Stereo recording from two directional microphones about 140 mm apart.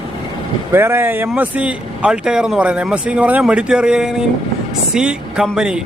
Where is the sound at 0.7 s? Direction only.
15° right (ahead or behind).